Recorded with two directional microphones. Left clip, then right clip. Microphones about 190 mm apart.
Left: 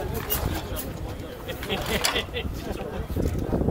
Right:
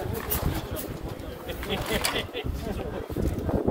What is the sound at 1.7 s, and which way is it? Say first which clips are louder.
Speech: left 2 dB; 45° left (ahead or behind).